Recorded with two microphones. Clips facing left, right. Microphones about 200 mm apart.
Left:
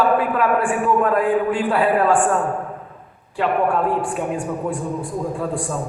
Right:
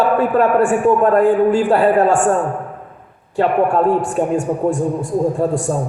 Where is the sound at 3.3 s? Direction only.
45° right (ahead or behind).